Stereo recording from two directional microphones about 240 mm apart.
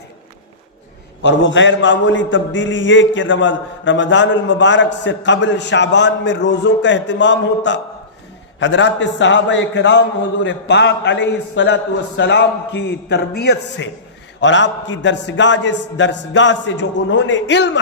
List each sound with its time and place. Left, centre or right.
1.2 s a man's voice: left